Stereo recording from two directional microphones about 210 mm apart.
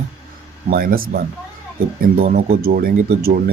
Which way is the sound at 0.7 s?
45° right (ahead or behind).